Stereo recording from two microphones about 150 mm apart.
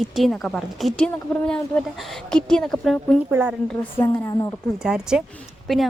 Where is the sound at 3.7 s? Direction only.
10° left (ahead or behind).